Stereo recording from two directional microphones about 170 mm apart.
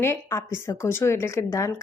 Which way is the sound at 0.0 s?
15° left (ahead or behind).